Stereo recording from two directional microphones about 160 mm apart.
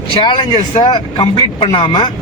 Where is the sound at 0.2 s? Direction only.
30° left (ahead or behind).